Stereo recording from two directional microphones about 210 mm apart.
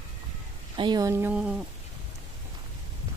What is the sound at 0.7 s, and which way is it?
Speech, 20° right (ahead or behind).